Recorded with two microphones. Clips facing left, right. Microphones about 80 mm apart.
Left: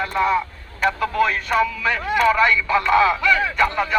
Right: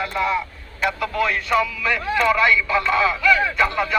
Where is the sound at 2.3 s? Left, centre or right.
Left.